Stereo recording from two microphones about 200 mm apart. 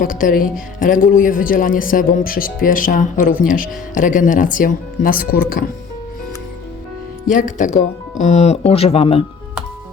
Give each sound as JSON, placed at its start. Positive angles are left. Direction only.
{"t": 0.0, "sound": "speech", "side_deg": 45}
{"t": 7.3, "sound": "speech", "side_deg": 40}